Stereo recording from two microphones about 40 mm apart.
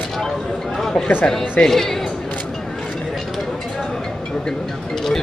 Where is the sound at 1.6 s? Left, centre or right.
Centre.